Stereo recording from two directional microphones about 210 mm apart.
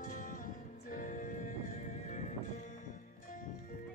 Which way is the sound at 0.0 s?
40° left (ahead or behind).